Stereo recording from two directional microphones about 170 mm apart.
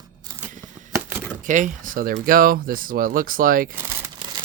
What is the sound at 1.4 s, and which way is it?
Speech, 50° right (ahead or behind).